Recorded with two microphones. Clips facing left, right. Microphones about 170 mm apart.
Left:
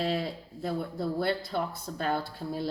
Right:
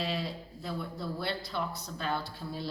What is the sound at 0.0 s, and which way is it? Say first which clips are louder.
Speech: left 4 dB; 50° left (ahead or behind).